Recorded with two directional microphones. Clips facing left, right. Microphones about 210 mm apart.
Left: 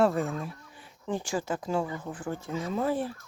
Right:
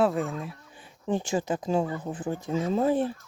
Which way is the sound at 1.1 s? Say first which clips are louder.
Right 4 dB; 20° right (ahead or behind).